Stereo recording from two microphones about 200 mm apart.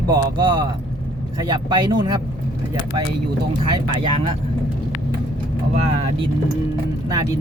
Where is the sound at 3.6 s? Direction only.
25° right (ahead or behind).